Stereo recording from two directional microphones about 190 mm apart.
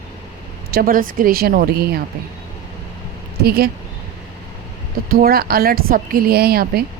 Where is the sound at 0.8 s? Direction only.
50° right (ahead or behind).